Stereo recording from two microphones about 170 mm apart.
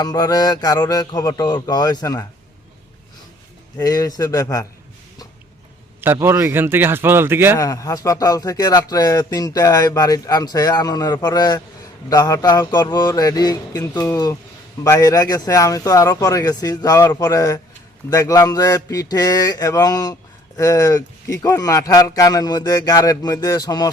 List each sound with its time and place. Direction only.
0.0 s speech: 20° left (ahead or behind)
3.8 s speech: 20° left (ahead or behind)
6.0 s a man's voice: 15° right (ahead or behind)
7.5 s speech: 20° left (ahead or behind)